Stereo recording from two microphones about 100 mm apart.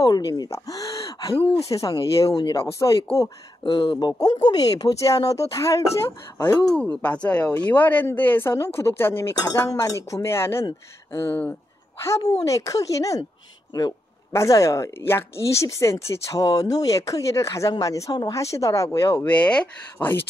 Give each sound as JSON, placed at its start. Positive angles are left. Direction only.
{"t": 0.0, "sound": "speech", "side_deg": 40}
{"t": 0.5, "sound": "gasp", "side_deg": 35}
{"t": 1.7, "sound": "speech", "side_deg": 35}
{"t": 3.6, "sound": "speech", "side_deg": 60}
{"t": 4.2, "sound": "speech", "side_deg": 45}
{"t": 7.0, "sound": "speech", "side_deg": 15}
{"t": 14.3, "sound": "speech", "side_deg": 30}
{"t": 19.2, "sound": "speech", "side_deg": 15}